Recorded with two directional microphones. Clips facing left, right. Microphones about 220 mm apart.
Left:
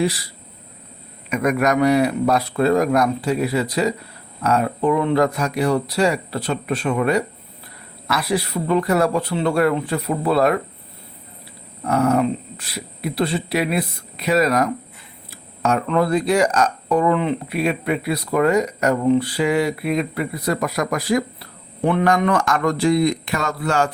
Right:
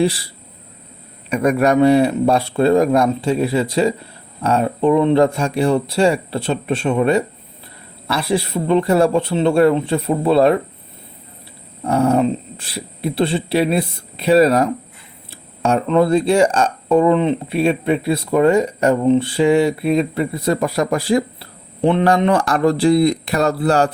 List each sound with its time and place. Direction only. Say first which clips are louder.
0.0 s speech: right 4 dB; 30° right (ahead or behind)
1.3 s speech: right 4 dB; 30° right (ahead or behind)
11.8 s speech: right 2 dB; 30° right (ahead or behind)